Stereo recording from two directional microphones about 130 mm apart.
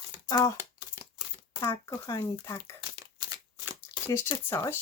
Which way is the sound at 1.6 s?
25° left (ahead or behind).